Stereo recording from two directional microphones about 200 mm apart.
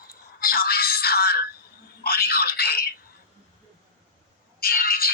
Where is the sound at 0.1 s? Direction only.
45° left (ahead or behind).